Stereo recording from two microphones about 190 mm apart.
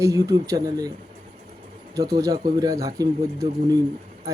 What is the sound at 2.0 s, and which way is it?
Speech, 20° right (ahead or behind).